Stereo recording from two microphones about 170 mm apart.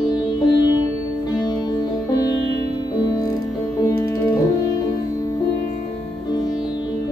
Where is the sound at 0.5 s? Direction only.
20° left (ahead or behind).